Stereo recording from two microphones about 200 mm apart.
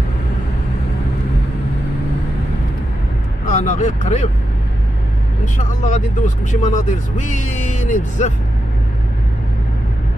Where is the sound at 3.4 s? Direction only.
35° left (ahead or behind).